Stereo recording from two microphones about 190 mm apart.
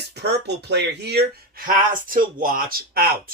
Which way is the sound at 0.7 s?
60° right (ahead or behind).